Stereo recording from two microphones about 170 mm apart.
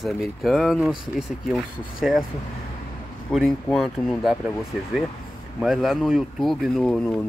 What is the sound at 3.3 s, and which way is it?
Speech, centre (ahead or behind).